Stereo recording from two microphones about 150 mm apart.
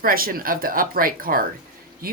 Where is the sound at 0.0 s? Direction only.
75° right (ahead or behind).